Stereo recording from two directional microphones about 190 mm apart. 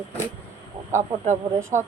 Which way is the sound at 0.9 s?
40° right (ahead or behind).